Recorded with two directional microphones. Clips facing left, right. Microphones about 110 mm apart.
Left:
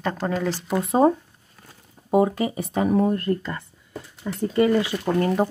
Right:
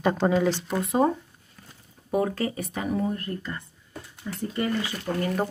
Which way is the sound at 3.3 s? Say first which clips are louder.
Left 8 dB; 90° left.